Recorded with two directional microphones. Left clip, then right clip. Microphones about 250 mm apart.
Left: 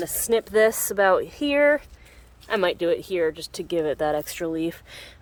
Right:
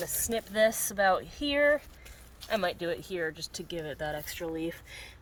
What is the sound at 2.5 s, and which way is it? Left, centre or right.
Speech, centre.